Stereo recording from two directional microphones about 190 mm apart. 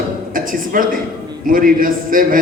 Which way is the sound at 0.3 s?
45° right (ahead or behind).